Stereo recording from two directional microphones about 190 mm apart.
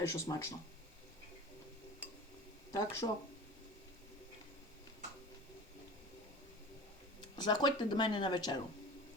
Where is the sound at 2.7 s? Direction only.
15° left (ahead or behind).